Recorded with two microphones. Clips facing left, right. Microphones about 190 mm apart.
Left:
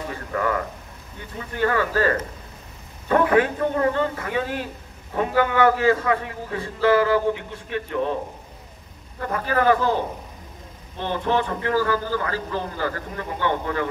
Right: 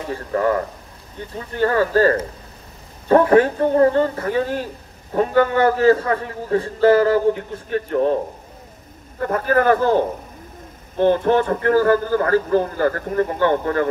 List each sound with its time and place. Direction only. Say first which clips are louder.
0.1 s a man's voice: right 6 dB; 35° right (ahead or behind)
9.2 s a man's voice: right 4 dB; 50° right (ahead or behind)